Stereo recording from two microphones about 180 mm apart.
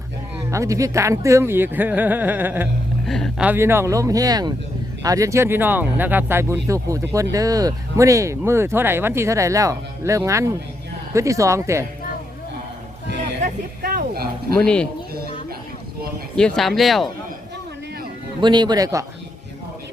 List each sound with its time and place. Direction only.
0.5 s speech: 15° right (ahead or behind)
3.1 s speech: centre (ahead or behind)
3.4 s speech: 10° right (ahead or behind)
13.4 s a sound: 50° right (ahead or behind)
14.6 s speech: 5° left (ahead or behind)
16.3 s speech: 5° left (ahead or behind)
18.3 s speech: 25° right (ahead or behind)